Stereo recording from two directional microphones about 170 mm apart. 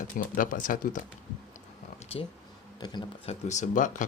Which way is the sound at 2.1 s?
35° left (ahead or behind).